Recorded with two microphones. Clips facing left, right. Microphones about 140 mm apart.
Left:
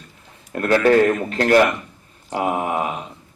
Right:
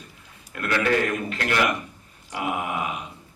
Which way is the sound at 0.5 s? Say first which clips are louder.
Left 8 dB; 40° left (ahead or behind).